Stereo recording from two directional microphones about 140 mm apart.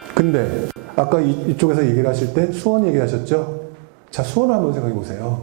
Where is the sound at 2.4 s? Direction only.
20° right (ahead or behind).